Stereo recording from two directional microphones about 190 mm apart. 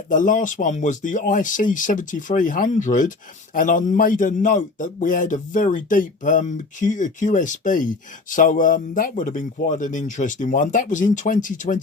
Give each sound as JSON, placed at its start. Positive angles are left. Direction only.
{"t": 0.1, "sound": "a man's voice", "side_deg": 45}